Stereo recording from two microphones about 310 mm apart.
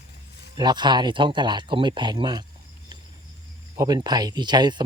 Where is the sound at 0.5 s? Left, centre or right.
Centre.